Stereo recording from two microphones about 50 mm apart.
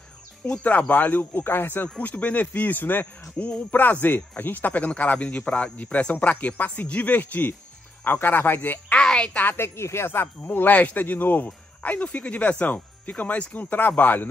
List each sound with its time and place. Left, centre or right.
0.5 s speech: left
2.0 s speech: left
2.4 s a man's voice: left
3.3 s speech: left
5.8 s speech: left
8.9 s speech: centre
9.6 s speech: left
10.5 s speech: left